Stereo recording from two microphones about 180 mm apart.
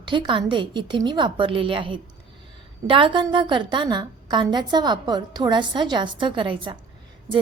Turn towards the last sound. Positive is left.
turn(degrees=-25)  # may be behind; listen again after turning